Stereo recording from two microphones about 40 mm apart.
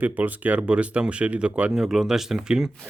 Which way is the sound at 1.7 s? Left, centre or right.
Centre.